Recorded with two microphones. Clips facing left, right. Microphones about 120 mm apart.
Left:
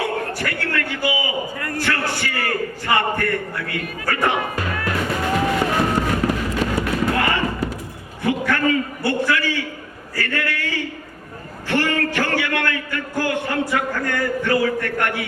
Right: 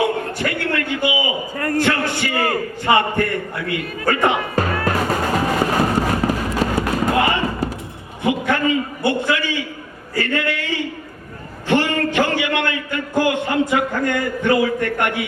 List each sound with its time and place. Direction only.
0.0 s a man's voice: 20° right (ahead or behind)
4.5 s music: 40° right (ahead or behind)
7.1 s basketball bounce: 20° right (ahead or behind)
8.2 s a sound: 20° right (ahead or behind)
10.2 s a man's voice: 20° right (ahead or behind)